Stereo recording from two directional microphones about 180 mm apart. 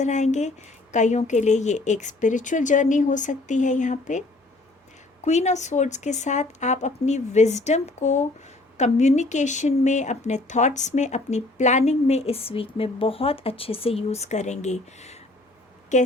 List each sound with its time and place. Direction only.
0.0 s speech: 40° left (ahead or behind)
5.2 s speech: 40° left (ahead or behind)